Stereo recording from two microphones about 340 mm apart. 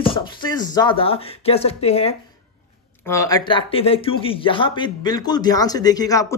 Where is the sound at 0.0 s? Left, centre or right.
Centre.